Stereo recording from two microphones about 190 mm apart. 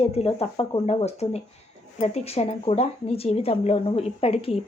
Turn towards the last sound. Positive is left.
turn(degrees=30)  # may be behind; listen again after turning